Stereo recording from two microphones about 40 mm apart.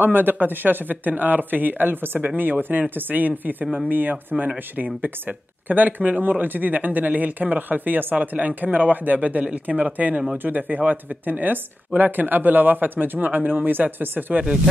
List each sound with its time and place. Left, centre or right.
0.0 s speech: right
10.3 s speech: right